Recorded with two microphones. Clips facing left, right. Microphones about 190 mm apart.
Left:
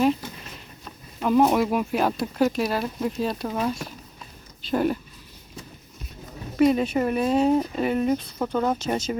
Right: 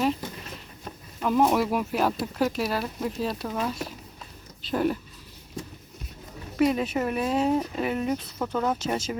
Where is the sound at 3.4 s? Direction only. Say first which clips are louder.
Left 3 dB; 10° left (ahead or behind).